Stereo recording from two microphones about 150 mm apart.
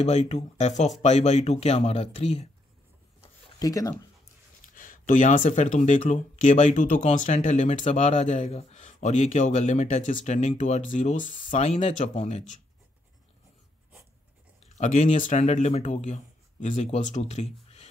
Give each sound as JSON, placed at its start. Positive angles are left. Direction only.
{"t": 0.0, "sound": "speech", "side_deg": 50}
{"t": 3.5, "sound": "speech", "side_deg": 25}
{"t": 4.7, "sound": "speech", "side_deg": 65}
{"t": 14.6, "sound": "speech", "side_deg": 55}